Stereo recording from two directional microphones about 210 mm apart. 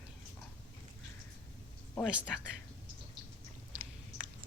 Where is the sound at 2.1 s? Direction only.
5° right (ahead or behind).